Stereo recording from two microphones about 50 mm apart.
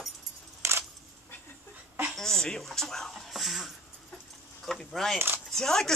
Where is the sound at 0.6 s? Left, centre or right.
Right.